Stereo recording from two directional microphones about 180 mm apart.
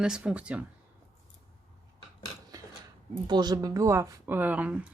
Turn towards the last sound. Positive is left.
turn(degrees=-10)  # may be behind; listen again after turning